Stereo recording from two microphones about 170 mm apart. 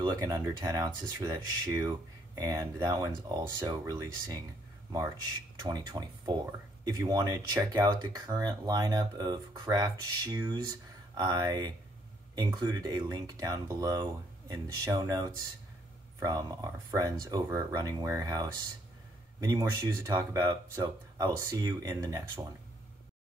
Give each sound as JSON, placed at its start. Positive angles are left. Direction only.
{"t": 0.0, "sound": "speech", "side_deg": -25}
{"t": 5.6, "sound": "speech", "side_deg": -25}